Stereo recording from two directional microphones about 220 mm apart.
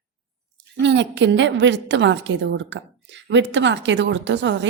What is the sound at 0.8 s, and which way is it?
A woman's voice, 55° right (ahead or behind).